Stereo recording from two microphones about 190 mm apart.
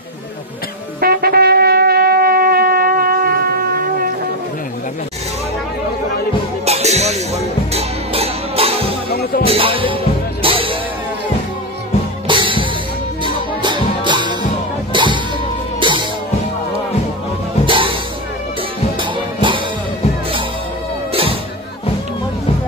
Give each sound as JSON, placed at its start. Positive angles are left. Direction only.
{"t": 1.0, "sound": "shofar", "side_deg": -55}
{"t": 6.6, "sound": "music", "side_deg": -35}
{"t": 12.3, "sound": "music", "side_deg": -25}
{"t": 17.6, "sound": "music", "side_deg": -25}
{"t": 18.9, "sound": "music", "side_deg": -25}